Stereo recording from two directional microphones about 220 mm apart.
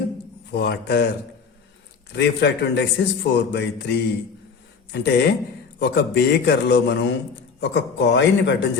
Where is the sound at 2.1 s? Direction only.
50° left (ahead or behind).